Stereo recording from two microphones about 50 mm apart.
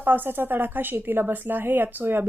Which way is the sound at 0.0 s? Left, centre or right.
Right.